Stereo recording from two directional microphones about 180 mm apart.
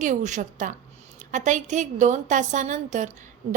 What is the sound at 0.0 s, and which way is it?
A woman's voice, 40° right (ahead or behind).